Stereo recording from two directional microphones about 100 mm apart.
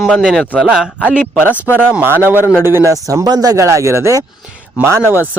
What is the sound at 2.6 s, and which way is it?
Speech, 30° right (ahead or behind).